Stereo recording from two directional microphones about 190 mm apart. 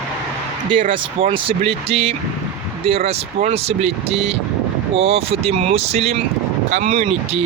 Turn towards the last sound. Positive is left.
turn(degrees=-35)  # may be behind; listen again after turning